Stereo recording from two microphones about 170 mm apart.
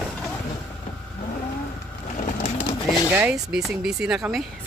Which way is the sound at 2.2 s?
45° left (ahead or behind).